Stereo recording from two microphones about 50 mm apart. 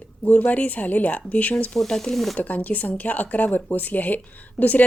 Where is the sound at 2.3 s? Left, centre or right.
Left.